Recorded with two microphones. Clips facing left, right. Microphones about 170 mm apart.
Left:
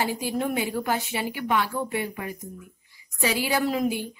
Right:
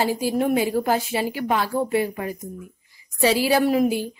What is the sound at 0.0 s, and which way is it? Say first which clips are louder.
A woman's voice: right 5 dB; 35° right (ahead or behind).